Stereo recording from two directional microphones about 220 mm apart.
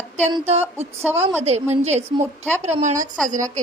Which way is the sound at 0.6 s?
10° right (ahead or behind).